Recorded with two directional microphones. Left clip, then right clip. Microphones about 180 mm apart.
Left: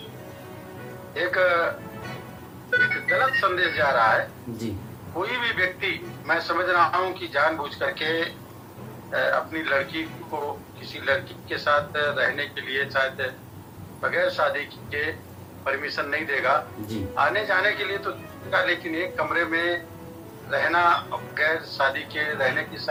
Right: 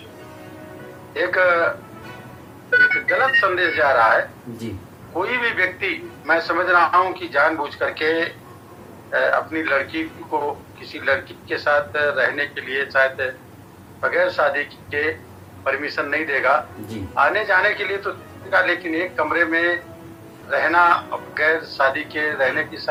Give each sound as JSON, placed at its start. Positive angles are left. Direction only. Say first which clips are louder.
{"t": 1.1, "sound": "a man's voice", "louder": "right 4 dB", "side_deg": -50}
{"t": 11.0, "sound": "a man's voice", "louder": "right 4 dB", "side_deg": -50}